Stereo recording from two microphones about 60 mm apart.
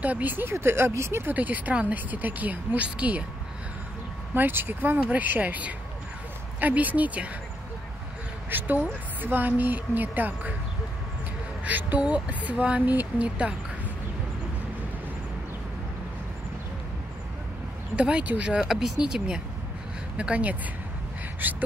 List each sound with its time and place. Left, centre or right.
0.0 s speech: right
0.5 s speech: right
1.3 s speech: right
4.3 s a woman's voice: right
8.5 s a woman's voice: right
11.6 s speech: right
17.9 s speech: centre
18.7 s speech: centre
21.4 s speech: right